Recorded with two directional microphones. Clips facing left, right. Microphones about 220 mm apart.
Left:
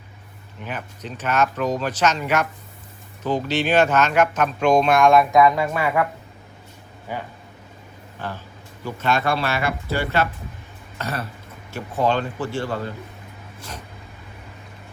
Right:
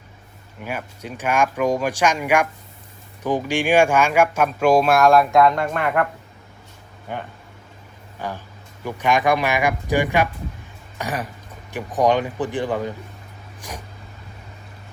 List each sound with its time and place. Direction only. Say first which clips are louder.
0.6 s speech: right 2 dB; 10° right (ahead or behind)
8.2 s speech: right 2 dB; 15° right (ahead or behind)
13.6 s vehicle: right 2 dB; 15° right (ahead or behind)